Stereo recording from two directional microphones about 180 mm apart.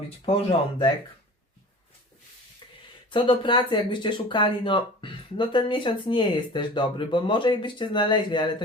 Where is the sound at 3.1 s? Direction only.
25° left (ahead or behind).